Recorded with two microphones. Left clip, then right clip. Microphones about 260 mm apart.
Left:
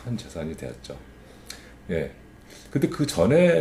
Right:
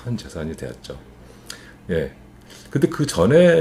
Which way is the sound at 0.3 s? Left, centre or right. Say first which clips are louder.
Right 3 dB; right.